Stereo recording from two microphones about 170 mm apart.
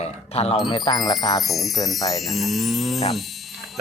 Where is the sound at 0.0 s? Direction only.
40° left (ahead or behind).